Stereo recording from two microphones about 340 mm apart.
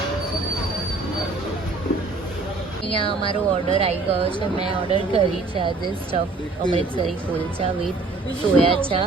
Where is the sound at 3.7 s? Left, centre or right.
Centre.